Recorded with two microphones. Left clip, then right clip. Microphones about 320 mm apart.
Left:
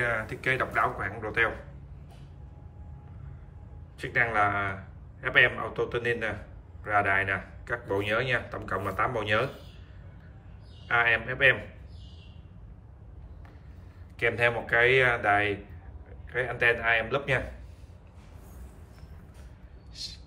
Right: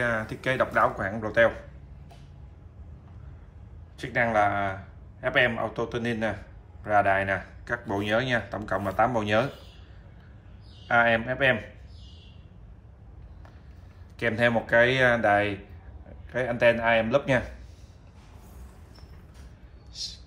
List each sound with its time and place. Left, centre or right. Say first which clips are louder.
0.0 s speech: right 1 dB; centre
4.0 s a man's voice: right 2 dB; centre
10.9 s speech: right 3 dB; centre
14.1 s speech: right 1 dB; centre
19.9 s a sound: right 3 dB; centre